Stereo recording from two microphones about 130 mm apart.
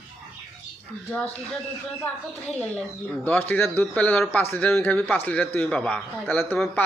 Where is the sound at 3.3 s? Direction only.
15° left (ahead or behind).